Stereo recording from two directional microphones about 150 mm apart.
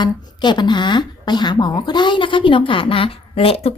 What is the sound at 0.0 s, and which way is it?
Speech, 30° left (ahead or behind).